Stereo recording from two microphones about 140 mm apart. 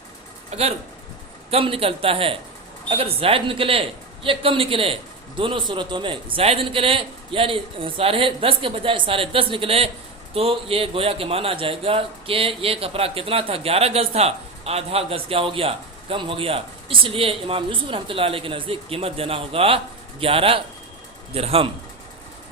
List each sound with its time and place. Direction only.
0.5 s a man's voice: 50° right (ahead or behind)